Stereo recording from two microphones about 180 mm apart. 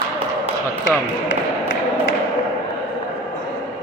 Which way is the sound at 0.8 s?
90° left.